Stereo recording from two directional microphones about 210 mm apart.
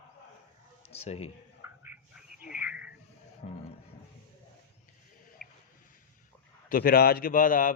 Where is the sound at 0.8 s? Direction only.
30° left (ahead or behind).